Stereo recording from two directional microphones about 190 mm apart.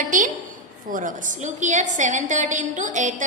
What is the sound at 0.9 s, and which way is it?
A woman's voice, 45° right (ahead or behind).